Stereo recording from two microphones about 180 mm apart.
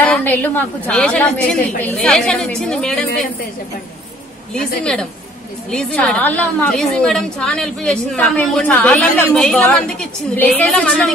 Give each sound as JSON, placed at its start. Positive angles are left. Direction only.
{"t": 0.0, "sound": "a woman's voice", "side_deg": 10}
{"t": 5.7, "sound": "a woman's voice", "side_deg": 5}